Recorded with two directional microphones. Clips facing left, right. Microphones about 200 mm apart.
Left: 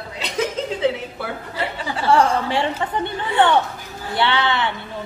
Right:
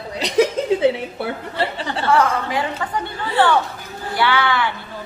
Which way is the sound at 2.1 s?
30° left (ahead or behind).